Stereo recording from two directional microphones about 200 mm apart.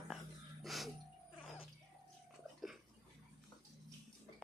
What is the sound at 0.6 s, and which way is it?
Music, centre (ahead or behind).